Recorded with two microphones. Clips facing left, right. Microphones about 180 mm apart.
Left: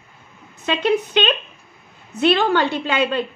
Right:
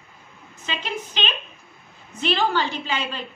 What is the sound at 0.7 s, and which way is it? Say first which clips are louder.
A woman's voice: left 12 dB; 65° left (ahead or behind).